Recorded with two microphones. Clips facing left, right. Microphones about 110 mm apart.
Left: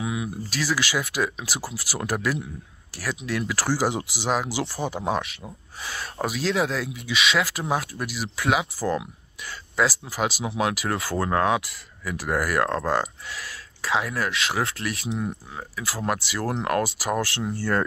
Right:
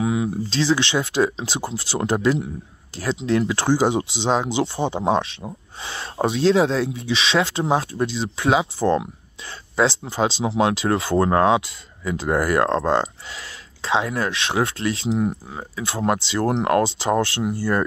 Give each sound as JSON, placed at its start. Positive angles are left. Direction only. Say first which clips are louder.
{"t": 0.0, "sound": "speech", "louder": "right 7 dB", "side_deg": -30}